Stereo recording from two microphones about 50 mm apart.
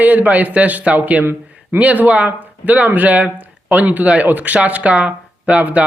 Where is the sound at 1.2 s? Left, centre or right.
Right.